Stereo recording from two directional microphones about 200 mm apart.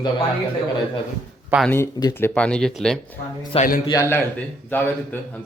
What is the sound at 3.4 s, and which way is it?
A man's voice, 25° left (ahead or behind).